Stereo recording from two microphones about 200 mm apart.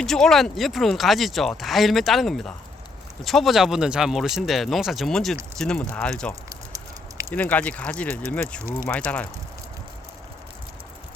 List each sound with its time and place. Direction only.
0.0 s speech: centre (ahead or behind)
6.5 s a sound: 15° right (ahead or behind)
7.3 s speech: 5° left (ahead or behind)